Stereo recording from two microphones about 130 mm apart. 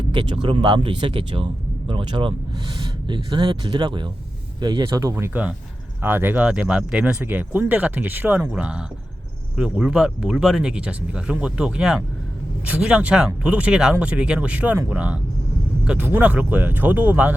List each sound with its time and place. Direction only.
0.1 s speech: 35° right (ahead or behind); by 17.3 s 15° right (ahead or behind)